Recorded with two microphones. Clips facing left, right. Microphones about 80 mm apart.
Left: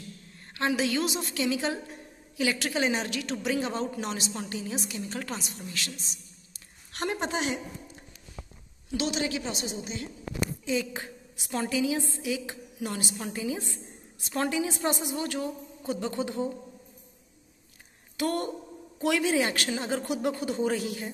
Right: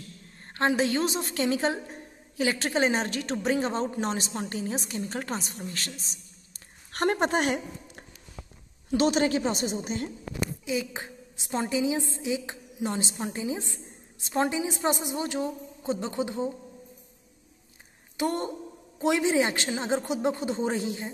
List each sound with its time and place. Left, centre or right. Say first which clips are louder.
0.6 s a woman's voice: right 2 dB; right
8.9 s a woman's voice: right 6 dB; right
10.6 s a woman's voice: left 1 dB; centre
18.1 s a woman's voice: right 1 dB; right